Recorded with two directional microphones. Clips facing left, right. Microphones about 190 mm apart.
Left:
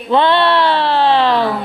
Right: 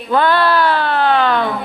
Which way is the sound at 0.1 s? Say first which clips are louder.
Left 2 dB; 25° left (ahead or behind).